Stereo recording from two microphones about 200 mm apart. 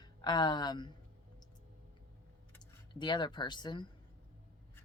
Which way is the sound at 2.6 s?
20° left (ahead or behind).